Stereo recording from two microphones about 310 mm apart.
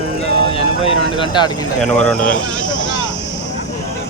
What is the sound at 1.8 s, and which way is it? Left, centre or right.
Speech, centre.